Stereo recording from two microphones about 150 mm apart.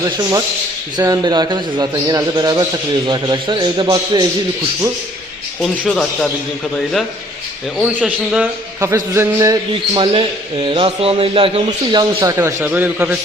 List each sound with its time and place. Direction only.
0.0 s a man's voice: 25° right (ahead or behind)
5.8 s a man's voice: 5° left (ahead or behind)
7.8 s speech: 5° right (ahead or behind)
8.8 s a man's voice: 20° right (ahead or behind)
10.1 s a man's voice: 35° right (ahead or behind); by 13.1 s 10° right (ahead or behind)